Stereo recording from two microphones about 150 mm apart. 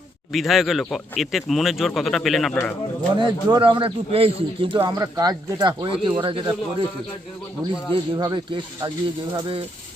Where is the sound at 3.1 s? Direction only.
30° right (ahead or behind).